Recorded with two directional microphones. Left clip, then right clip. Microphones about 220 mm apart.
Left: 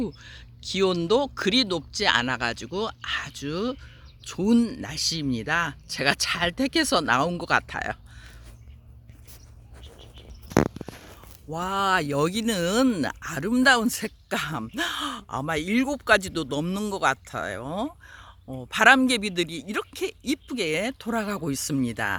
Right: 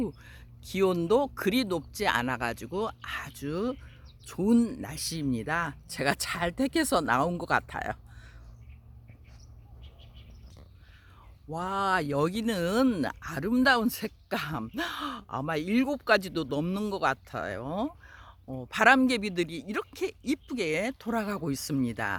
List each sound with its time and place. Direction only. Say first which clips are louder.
0.0 s speech: left 3 dB; centre (ahead or behind)
11.4 s speech: left 4 dB; 10° left (ahead or behind)